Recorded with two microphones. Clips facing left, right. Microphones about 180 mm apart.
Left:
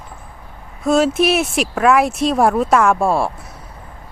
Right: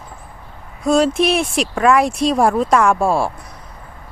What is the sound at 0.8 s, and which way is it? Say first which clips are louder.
Speech: even; centre (ahead or behind).